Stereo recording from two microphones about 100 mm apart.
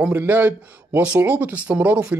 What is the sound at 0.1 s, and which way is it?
Speech, 20° right (ahead or behind).